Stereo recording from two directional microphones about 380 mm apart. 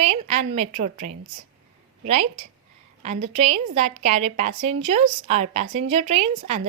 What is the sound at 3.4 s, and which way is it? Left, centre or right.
Speech, centre.